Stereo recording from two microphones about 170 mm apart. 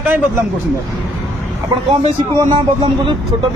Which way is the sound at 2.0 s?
30° right (ahead or behind).